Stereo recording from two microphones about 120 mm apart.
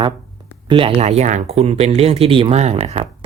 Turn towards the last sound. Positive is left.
turn(degrees=-60)  # may be behind; listen again after turning